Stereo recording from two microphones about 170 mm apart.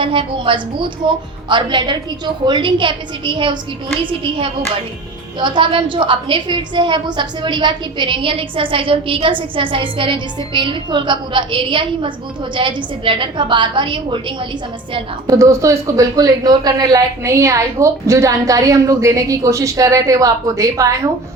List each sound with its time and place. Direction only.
0.0 s a woman's voice: 30° right (ahead or behind)